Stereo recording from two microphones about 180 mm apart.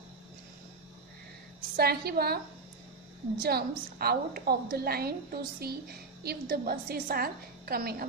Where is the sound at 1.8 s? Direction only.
60° right (ahead or behind).